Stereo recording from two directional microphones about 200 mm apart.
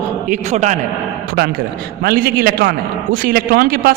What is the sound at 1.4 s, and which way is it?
A man's voice, 50° right (ahead or behind).